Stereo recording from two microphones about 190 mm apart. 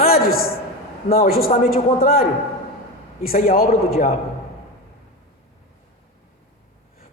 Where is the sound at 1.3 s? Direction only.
50° left (ahead or behind).